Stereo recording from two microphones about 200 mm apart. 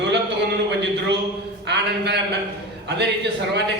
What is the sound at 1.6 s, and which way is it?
Speech, 60° right (ahead or behind).